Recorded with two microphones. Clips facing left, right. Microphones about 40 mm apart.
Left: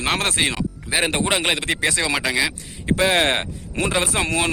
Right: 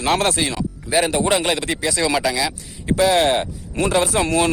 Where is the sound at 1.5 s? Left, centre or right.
Left.